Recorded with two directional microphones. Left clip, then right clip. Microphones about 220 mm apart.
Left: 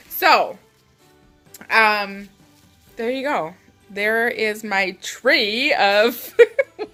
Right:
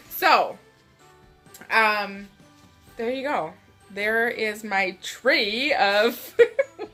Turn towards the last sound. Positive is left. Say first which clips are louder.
# left 5 dB
turn(degrees=45)  # may be behind; listen again after turning